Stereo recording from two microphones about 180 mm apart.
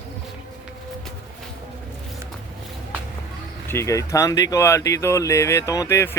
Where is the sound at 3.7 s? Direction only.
15° left (ahead or behind).